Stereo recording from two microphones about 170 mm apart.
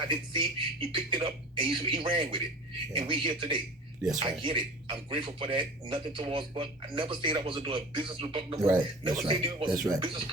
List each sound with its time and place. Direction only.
0.0 s speech: 30° right (ahead or behind)
9.7 s speech: 20° right (ahead or behind)
10.0 s speech: 30° right (ahead or behind)